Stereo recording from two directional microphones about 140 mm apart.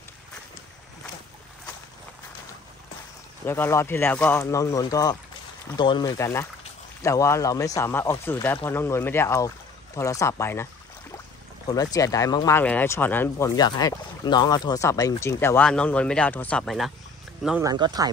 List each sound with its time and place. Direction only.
3.4 s speech: 15° left (ahead or behind); by 6.1 s 30° left (ahead or behind)
6.1 s speech: 20° left (ahead or behind)
12.5 s speech: 15° left (ahead or behind)
13.6 s speech: 30° left (ahead or behind)
15.6 s speech: 5° left (ahead or behind)
17.6 s speech: 30° right (ahead or behind)